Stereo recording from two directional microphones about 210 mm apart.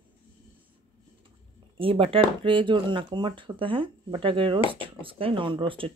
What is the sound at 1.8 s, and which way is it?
Speech, 25° right (ahead or behind).